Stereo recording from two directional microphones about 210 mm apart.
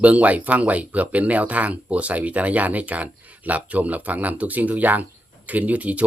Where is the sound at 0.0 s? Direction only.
5° right (ahead or behind).